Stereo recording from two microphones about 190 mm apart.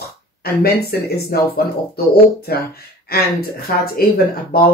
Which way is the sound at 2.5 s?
55° left (ahead or behind).